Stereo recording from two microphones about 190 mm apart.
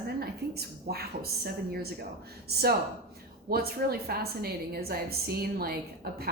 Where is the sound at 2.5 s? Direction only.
55° right (ahead or behind).